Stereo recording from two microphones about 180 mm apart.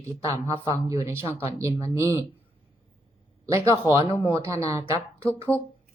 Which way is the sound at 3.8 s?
25° left (ahead or behind).